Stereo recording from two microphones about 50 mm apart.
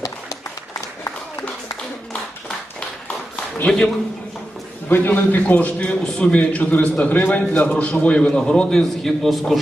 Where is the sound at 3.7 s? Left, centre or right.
Centre.